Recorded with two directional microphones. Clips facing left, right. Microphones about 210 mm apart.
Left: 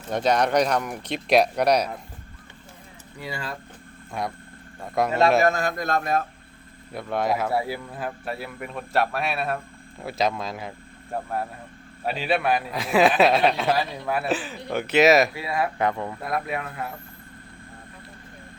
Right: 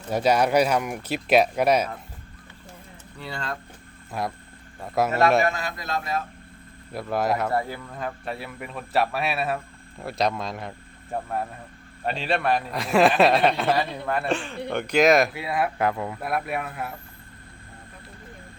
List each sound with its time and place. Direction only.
0.1 s speech: 5° right (ahead or behind)
3.2 s speech: 10° left (ahead or behind)
5.5 s speech: 45° left (ahead or behind)
6.9 s speech: centre (ahead or behind)